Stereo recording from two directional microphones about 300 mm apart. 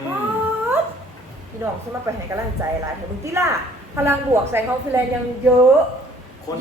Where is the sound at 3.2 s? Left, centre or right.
Centre.